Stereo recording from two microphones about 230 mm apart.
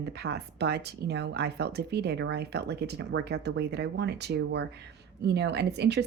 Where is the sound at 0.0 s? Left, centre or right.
Right.